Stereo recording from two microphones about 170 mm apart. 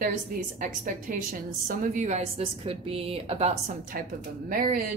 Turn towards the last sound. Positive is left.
turn(degrees=-50)  # may be behind; listen again after turning